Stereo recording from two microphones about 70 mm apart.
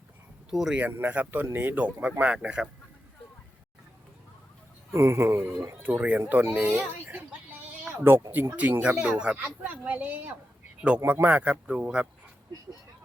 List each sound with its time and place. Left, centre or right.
0.5 s speech: centre
1.0 s speech: right
4.9 s speech: right
8.3 s speech: right
10.8 s speech: centre